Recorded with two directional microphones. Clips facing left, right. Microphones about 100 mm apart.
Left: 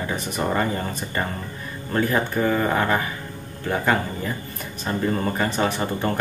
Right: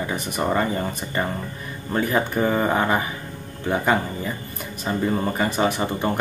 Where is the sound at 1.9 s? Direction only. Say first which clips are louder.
Even; 15° right (ahead or behind).